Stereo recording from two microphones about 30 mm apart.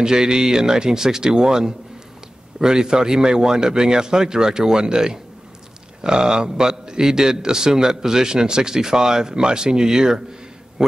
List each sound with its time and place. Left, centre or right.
0.0 s a man's voice: right